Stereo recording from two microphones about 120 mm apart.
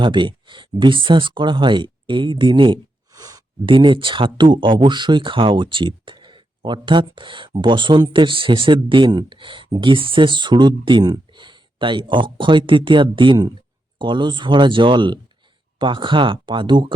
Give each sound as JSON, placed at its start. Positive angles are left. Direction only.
{"t": 0.0, "sound": "speech", "side_deg": -40}
{"t": 3.1, "sound": "a sound", "side_deg": -30}
{"t": 3.7, "sound": "speech", "side_deg": -45}